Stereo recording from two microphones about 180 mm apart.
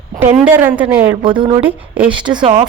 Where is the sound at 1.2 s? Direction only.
25° right (ahead or behind).